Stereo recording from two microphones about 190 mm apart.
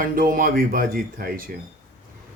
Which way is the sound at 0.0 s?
45° right (ahead or behind).